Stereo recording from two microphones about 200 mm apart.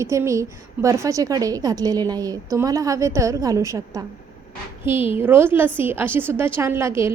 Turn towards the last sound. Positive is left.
turn(degrees=-10)  # may be behind; listen again after turning